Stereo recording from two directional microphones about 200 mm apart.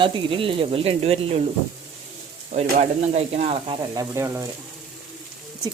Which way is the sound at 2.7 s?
35° right (ahead or behind).